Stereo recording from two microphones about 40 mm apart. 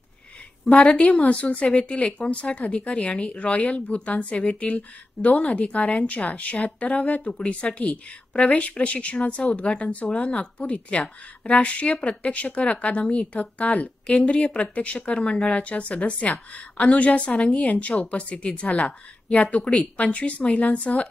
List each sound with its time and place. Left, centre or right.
0.7 s a woman's voice: centre
1.2 s a woman's voice: left
2.2 s a woman's voice: left
8.3 s a woman's voice: left